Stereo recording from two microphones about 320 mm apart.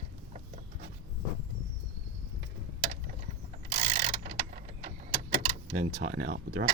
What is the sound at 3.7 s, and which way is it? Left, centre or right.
Mechanisms, right.